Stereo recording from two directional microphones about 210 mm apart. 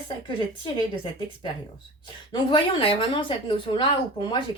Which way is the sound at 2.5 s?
25° left (ahead or behind).